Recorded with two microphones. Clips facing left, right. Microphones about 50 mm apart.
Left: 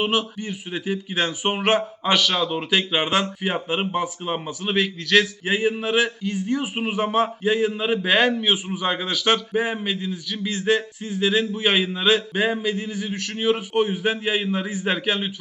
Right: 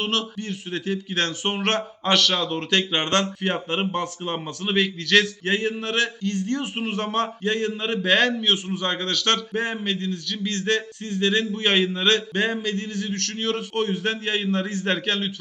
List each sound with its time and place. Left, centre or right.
0.0 s speech: centre